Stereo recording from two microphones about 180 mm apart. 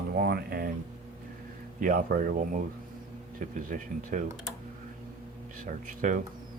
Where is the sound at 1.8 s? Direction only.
50° right (ahead or behind).